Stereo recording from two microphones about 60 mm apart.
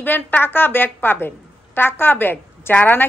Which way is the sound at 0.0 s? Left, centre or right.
Left.